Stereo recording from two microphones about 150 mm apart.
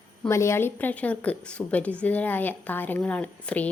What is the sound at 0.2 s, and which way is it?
A woman's voice, 20° left (ahead or behind).